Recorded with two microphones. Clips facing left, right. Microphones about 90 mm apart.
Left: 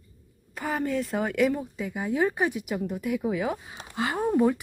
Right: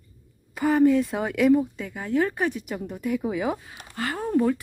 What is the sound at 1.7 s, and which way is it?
Speech, 10° left (ahead or behind).